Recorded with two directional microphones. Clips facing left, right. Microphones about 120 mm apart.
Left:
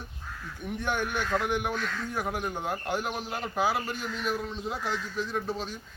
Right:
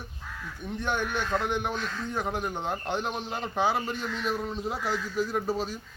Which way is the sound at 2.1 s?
10° left (ahead or behind).